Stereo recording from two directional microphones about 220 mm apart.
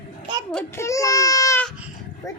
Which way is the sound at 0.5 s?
15° left (ahead or behind).